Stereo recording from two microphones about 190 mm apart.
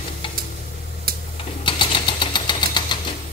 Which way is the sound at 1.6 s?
25° left (ahead or behind).